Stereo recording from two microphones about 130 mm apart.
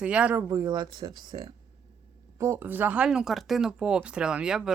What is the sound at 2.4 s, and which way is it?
Speech, 20° right (ahead or behind).